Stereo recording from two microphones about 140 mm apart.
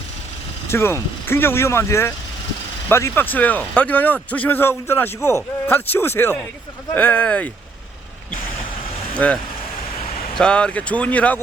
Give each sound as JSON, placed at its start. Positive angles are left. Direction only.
{"t": 0.7, "sound": "speech", "side_deg": 20}
{"t": 9.1, "sound": "speech", "side_deg": 10}